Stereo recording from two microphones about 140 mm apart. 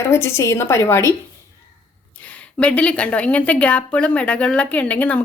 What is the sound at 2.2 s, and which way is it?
A woman's voice, 10° left (ahead or behind).